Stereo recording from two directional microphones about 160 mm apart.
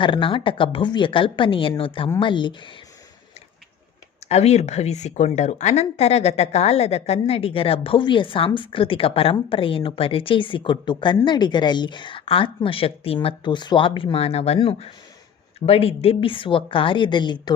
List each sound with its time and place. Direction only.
0.0 s a woman's voice: 30° left (ahead or behind)
4.3 s a woman's voice: 45° left (ahead or behind)